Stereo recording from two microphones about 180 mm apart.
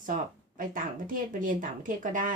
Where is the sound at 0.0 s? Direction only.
50° right (ahead or behind).